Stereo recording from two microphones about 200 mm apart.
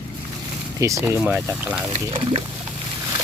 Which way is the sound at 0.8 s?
15° right (ahead or behind).